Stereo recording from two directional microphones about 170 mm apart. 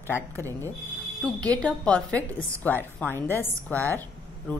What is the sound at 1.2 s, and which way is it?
A woman's voice, 5° left (ahead or behind).